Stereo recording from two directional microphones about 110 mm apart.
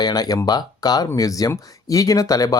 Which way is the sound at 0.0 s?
35° left (ahead or behind).